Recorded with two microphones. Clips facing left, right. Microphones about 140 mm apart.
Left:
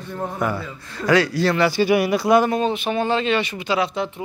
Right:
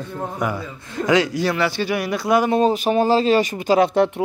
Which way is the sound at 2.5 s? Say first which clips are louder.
Right 4 dB; 40° right (ahead or behind).